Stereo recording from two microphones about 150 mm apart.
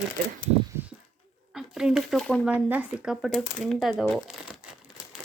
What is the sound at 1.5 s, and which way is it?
Speech, 5° right (ahead or behind).